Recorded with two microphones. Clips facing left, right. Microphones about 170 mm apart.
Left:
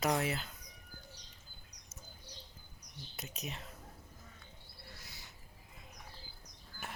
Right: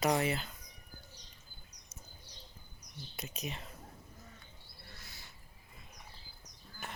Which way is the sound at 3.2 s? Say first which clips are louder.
Right 2 dB; centre (ahead or behind).